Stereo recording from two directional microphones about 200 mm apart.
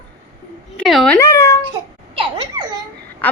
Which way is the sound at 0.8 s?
Centre (ahead or behind).